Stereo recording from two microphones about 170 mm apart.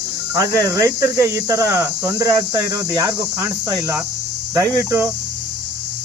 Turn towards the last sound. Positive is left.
turn(degrees=-15)  # may be behind; listen again after turning